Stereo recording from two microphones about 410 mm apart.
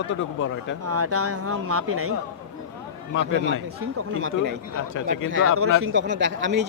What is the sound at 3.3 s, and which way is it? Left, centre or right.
Speech, left.